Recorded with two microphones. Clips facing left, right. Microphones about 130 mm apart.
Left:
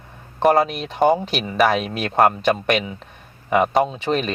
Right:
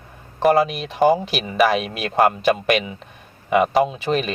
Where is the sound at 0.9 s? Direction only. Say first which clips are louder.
Even; centre (ahead or behind).